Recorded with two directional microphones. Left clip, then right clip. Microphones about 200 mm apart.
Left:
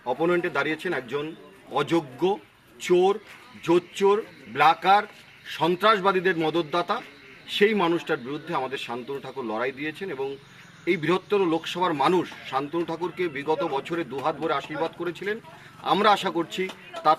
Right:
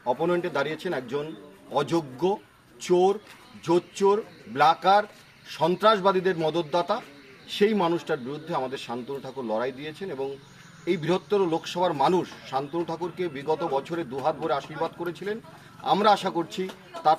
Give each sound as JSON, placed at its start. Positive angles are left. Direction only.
{"t": 0.0, "sound": "a man's voice", "side_deg": 10}